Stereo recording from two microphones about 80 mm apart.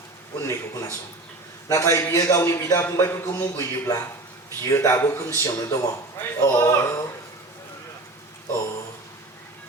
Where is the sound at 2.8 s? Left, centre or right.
Left.